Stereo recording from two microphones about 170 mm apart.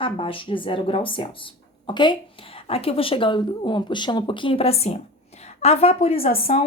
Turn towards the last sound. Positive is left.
turn(degrees=35)  # may be behind; listen again after turning